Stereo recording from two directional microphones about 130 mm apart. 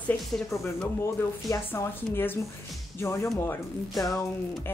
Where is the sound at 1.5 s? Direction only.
20° left (ahead or behind).